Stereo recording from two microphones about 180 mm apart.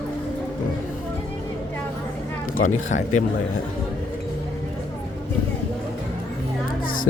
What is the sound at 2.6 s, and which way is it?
Speech, 45° left (ahead or behind).